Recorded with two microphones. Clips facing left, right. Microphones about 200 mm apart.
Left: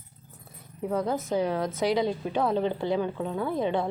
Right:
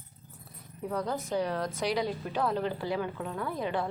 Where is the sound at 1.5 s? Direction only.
Centre (ahead or behind).